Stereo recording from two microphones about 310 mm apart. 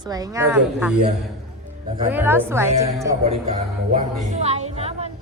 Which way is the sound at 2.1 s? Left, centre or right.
Centre.